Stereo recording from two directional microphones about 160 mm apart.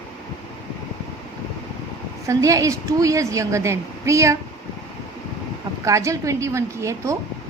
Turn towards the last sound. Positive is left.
turn(degrees=-20)  # may be behind; listen again after turning